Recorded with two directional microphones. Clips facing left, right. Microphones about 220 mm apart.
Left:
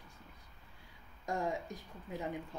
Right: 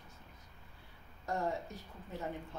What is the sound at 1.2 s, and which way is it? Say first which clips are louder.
Speech: even; 15° left (ahead or behind).